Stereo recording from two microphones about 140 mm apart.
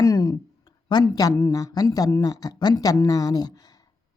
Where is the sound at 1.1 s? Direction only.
25° left (ahead or behind).